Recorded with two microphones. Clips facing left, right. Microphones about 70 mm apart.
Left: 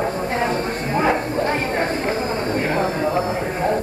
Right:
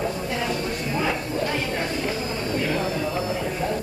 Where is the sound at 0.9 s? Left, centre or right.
Left.